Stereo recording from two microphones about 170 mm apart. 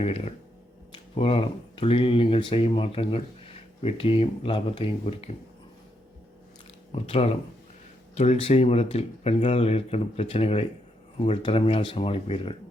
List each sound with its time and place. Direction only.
0.0 s speech: 40° left (ahead or behind)
6.9 s speech: 35° left (ahead or behind)